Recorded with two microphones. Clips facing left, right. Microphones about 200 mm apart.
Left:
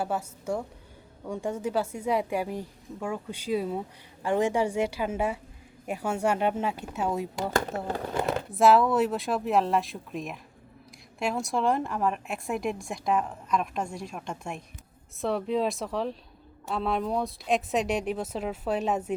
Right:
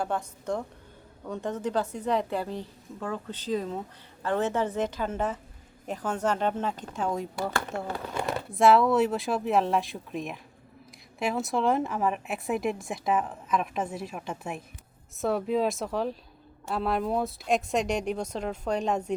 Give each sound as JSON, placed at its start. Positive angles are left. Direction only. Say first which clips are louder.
{"t": 0.0, "sound": "a woman's voice", "louder": "even", "side_deg": 5}
{"t": 7.9, "sound": "speech", "louder": "left 3 dB", "side_deg": 40}
{"t": 8.5, "sound": "a woman's voice", "louder": "even", "side_deg": 0}